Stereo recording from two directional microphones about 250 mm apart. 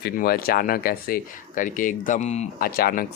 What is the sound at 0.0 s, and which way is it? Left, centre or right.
Speech, left.